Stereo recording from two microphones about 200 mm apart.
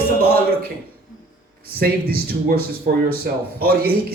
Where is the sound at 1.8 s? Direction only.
50° right (ahead or behind).